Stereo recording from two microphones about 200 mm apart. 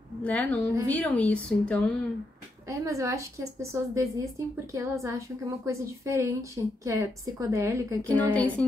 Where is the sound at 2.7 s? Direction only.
15° right (ahead or behind).